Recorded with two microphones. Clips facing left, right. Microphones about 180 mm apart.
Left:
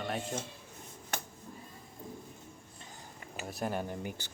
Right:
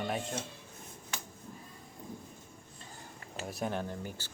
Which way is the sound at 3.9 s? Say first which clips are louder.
Left 2 dB; 15° left (ahead or behind).